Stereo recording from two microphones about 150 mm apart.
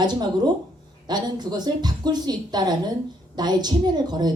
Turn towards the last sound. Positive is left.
turn(degrees=-30)  # may be behind; listen again after turning